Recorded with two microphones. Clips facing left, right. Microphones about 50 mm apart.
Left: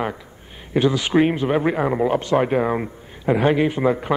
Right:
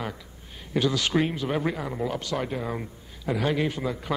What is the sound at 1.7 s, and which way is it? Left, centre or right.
A man's voice, left.